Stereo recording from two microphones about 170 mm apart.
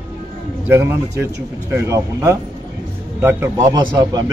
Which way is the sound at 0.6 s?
15° right (ahead or behind).